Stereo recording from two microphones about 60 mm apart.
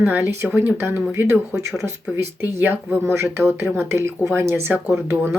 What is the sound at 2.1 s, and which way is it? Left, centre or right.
Speech, right.